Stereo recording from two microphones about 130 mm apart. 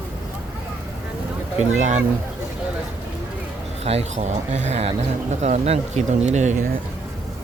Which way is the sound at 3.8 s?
55° right (ahead or behind).